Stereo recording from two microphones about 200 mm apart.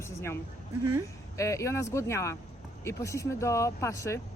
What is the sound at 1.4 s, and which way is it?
Speech, 15° left (ahead or behind).